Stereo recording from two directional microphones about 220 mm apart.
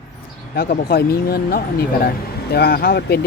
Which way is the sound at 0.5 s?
45° left (ahead or behind).